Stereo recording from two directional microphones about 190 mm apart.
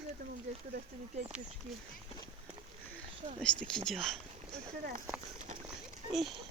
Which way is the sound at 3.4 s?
5° left (ahead or behind).